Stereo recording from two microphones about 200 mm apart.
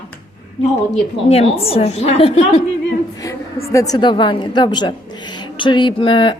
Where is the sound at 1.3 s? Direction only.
30° left (ahead or behind).